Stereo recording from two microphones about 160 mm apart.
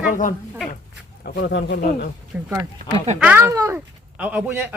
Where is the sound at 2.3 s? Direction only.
10° right (ahead or behind).